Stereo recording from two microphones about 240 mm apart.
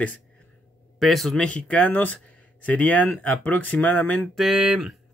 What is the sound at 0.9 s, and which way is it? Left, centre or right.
Speech, centre.